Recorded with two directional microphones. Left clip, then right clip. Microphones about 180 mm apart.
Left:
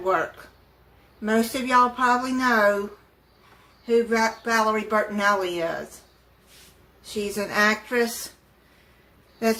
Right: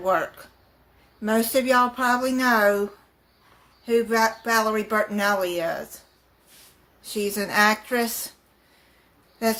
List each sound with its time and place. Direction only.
0.0 s speech: 55° right (ahead or behind)
3.8 s speech: 65° right (ahead or behind)
7.2 s speech: 50° right (ahead or behind)